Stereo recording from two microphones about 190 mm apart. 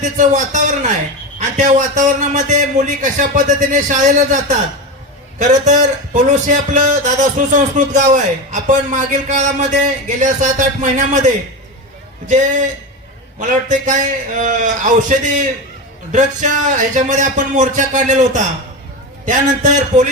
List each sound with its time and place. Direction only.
0.0 s a man's voice: 40° right (ahead or behind)
12.3 s a man's voice: 40° right (ahead or behind)